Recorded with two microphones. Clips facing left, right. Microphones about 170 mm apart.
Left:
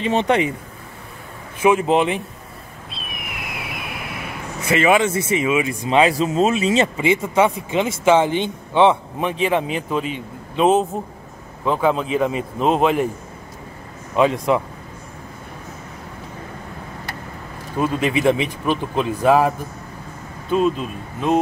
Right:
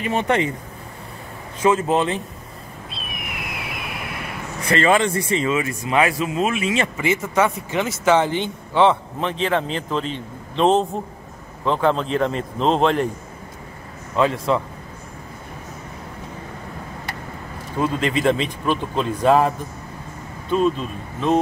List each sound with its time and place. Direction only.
0.0 s speech: 20° left (ahead or behind)
1.6 s speech: 15° left (ahead or behind)
2.9 s a sound: centre (ahead or behind); by 6.9 s 30° left (ahead or behind)
7.0 s speech: 20° left (ahead or behind)
14.1 s speech: 15° left (ahead or behind)
17.7 s speech: 15° left (ahead or behind)
20.5 s speech: 5° left (ahead or behind)